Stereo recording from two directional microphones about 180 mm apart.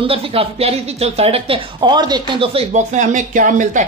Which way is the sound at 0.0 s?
30° right (ahead or behind).